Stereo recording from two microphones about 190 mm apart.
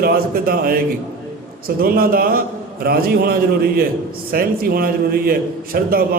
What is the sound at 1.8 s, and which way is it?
A man's voice, 50° right (ahead or behind).